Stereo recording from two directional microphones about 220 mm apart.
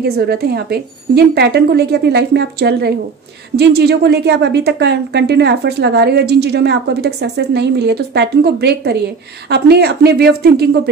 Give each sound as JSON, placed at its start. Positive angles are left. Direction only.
{"t": 0.0, "sound": "a woman's voice", "side_deg": -45}